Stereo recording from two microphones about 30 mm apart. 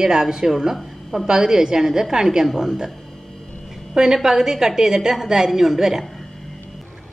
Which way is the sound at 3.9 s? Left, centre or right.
Centre.